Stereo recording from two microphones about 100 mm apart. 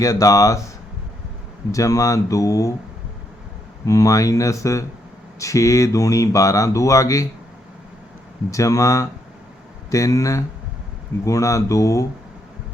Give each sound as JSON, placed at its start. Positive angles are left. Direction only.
{"t": 0.0, "sound": "speech", "side_deg": 35}
{"t": 1.7, "sound": "speech", "side_deg": 35}
{"t": 3.8, "sound": "speech", "side_deg": 35}
{"t": 8.4, "sound": "speech", "side_deg": 30}